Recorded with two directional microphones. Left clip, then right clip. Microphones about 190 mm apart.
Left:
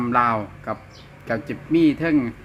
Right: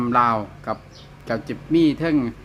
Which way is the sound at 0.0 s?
Centre (ahead or behind).